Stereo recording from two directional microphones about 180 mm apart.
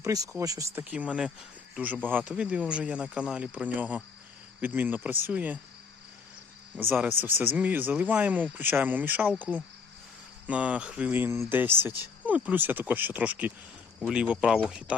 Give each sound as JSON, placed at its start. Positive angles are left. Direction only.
{"t": 0.0, "sound": "speech", "side_deg": -20}
{"t": 0.9, "sound": "speech", "side_deg": -5}
{"t": 6.9, "sound": "speech", "side_deg": -10}